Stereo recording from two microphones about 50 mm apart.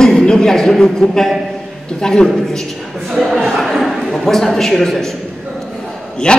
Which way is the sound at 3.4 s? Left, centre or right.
Centre.